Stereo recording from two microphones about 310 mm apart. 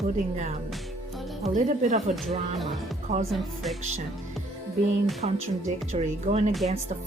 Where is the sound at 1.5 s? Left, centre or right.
Right.